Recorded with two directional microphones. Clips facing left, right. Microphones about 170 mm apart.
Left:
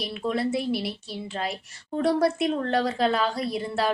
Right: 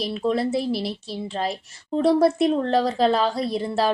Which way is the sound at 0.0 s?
30° right (ahead or behind).